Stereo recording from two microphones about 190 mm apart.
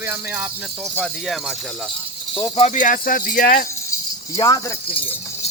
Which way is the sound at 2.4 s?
30° left (ahead or behind).